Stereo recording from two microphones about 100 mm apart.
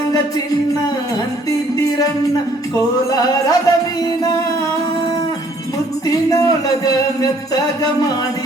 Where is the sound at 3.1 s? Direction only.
35° left (ahead or behind).